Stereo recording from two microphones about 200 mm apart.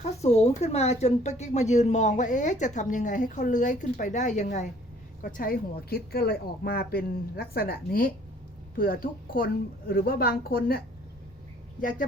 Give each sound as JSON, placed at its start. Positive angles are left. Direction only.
{"t": 0.0, "sound": "a woman's voice", "side_deg": 35}